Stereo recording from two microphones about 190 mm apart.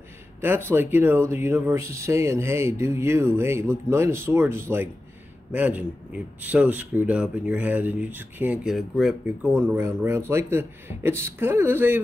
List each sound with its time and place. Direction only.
0.4 s speech: 10° right (ahead or behind)